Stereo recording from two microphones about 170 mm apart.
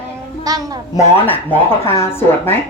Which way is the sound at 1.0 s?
10° left (ahead or behind).